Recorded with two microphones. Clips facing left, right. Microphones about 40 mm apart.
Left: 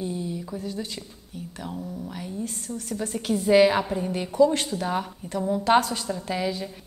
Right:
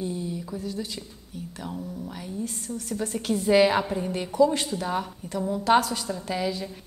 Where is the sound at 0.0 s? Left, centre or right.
Centre.